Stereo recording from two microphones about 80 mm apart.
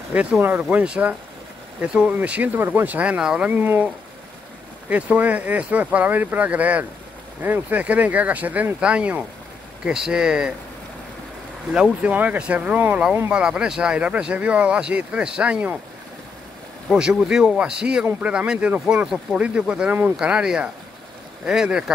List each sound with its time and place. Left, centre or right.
0.1 s speech: centre
3.5 s speech: right
11.7 s speech: centre
16.9 s speech: centre